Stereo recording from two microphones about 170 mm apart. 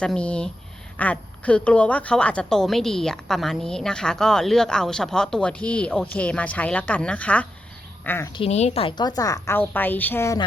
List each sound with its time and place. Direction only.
0.0 s a woman's voice: 5° left (ahead or behind)
8.3 s a woman's voice: 35° left (ahead or behind); by 10.4 s 15° left (ahead or behind)